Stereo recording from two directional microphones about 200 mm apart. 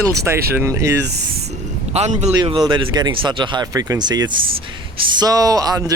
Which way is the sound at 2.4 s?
20° right (ahead or behind).